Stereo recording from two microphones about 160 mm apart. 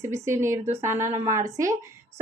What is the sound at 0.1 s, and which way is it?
A woman's voice, 15° right (ahead or behind).